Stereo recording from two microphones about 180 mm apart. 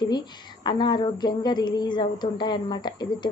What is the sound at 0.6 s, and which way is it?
Speech, 25° left (ahead or behind).